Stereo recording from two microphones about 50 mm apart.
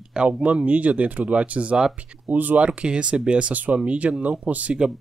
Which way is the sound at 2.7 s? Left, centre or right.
Centre.